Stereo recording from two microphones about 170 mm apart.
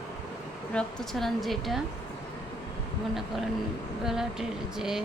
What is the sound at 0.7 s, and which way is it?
Speech, 5° left (ahead or behind).